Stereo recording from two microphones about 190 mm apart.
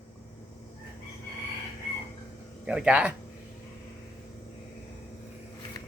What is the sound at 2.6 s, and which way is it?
Speech, 5° right (ahead or behind).